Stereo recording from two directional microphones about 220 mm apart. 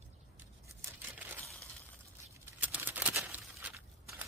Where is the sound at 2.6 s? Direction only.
10° right (ahead or behind).